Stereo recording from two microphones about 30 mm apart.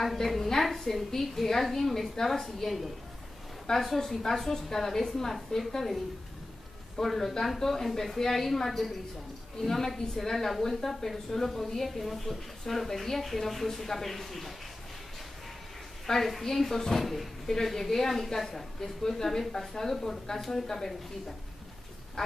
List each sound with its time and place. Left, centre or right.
0.0 s a woman's voice: centre
7.0 s a woman's voice: centre
16.1 s a woman's voice: centre